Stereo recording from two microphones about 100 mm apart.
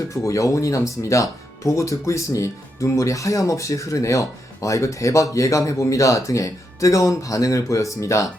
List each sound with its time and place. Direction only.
0.1 s speech: 30° left (ahead or behind)